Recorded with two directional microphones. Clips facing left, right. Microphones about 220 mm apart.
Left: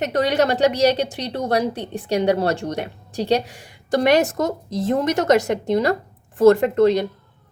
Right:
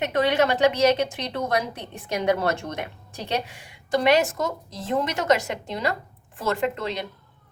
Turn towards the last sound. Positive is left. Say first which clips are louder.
# left 11 dB
turn(degrees=45)  # may be behind; listen again after turning